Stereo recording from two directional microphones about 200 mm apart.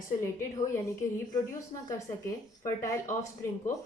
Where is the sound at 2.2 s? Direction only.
15° left (ahead or behind).